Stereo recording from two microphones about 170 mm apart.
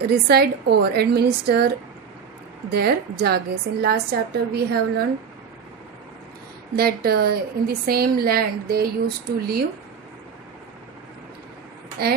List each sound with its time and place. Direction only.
0.0 s a woman's voice: 70° right (ahead or behind)
2.7 s a woman's voice: 70° right (ahead or behind)
6.7 s a woman's voice: 65° right (ahead or behind)
12.0 s a woman's voice: 65° right (ahead or behind)